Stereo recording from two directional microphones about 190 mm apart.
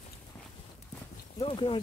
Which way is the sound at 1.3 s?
25° left (ahead or behind).